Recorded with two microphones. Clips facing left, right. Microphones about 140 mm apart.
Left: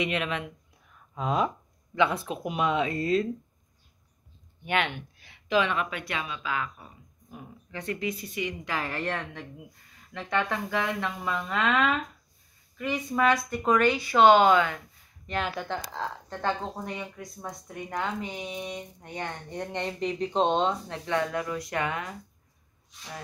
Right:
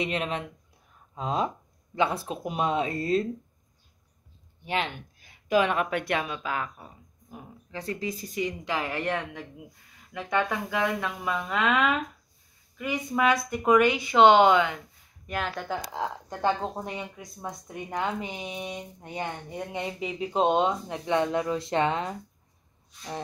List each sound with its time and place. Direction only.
0.0 s speech: 35° right (ahead or behind)
0.9 s a sound: 30° right (ahead or behind)
2.0 s speech: 35° right (ahead or behind)
4.6 s speech: 35° right (ahead or behind)
7.3 s speech: 30° right (ahead or behind)
8.6 s speech: 15° right (ahead or behind)
15.2 s speech: centre (ahead or behind)
15.9 s speech: 15° right (ahead or behind)
17.8 s a sound: 20° right (ahead or behind)
18.8 s speech: 20° right (ahead or behind)
19.5 s speech: 5° right (ahead or behind); by 22.1 s 25° right (ahead or behind)